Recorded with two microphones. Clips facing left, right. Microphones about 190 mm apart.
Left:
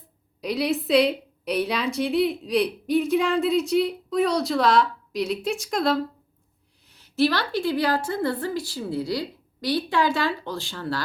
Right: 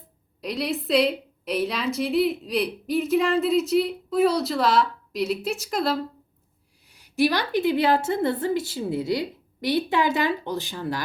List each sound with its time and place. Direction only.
0.4 s a woman's voice: centre (ahead or behind); by 11.0 s 15° right (ahead or behind)